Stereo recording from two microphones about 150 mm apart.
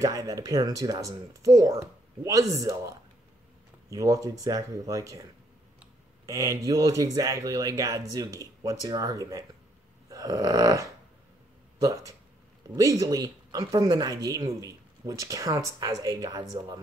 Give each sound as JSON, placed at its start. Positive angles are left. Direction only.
{"t": 0.0, "sound": "speech", "side_deg": -20}
{"t": 6.2, "sound": "speech", "side_deg": -20}
{"t": 10.0, "sound": "a sound", "side_deg": -20}
{"t": 11.8, "sound": "speech", "side_deg": -20}